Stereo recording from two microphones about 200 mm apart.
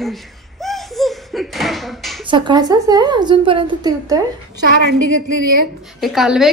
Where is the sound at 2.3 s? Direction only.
20° right (ahead or behind).